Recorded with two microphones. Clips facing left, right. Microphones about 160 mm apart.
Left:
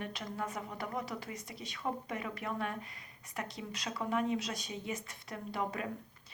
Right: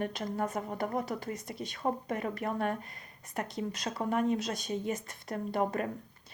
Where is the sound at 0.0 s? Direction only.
45° right (ahead or behind).